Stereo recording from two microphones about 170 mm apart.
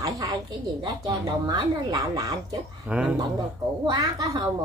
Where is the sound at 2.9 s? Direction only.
5° right (ahead or behind).